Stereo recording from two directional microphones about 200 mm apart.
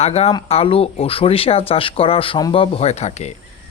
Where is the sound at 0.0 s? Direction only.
30° left (ahead or behind).